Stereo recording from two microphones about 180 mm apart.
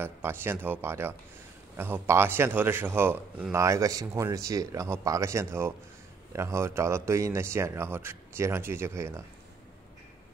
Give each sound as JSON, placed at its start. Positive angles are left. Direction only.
{"t": 0.0, "sound": "speech", "side_deg": -15}